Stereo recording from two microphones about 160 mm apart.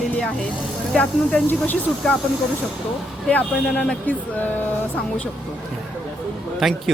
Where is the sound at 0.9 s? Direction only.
10° left (ahead or behind).